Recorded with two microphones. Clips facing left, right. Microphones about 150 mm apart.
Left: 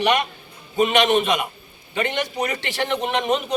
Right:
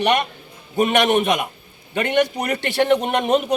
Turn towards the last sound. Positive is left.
turn(degrees=-50)  # may be behind; listen again after turning